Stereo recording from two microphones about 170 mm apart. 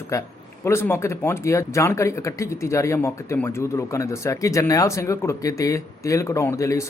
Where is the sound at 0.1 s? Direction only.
15° left (ahead or behind).